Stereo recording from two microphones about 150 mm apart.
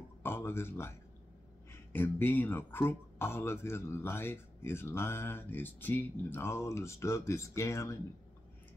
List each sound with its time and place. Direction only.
0.2 s speech: 15° left (ahead or behind)